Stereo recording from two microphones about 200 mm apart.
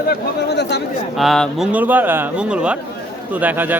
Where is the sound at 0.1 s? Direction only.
55° left (ahead or behind).